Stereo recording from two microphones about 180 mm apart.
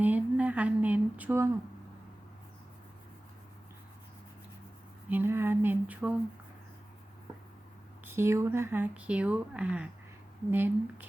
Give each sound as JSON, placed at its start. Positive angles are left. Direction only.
{"t": 0.0, "sound": "speech", "side_deg": -10}
{"t": 5.0, "sound": "speech", "side_deg": -10}
{"t": 8.0, "sound": "speech", "side_deg": -15}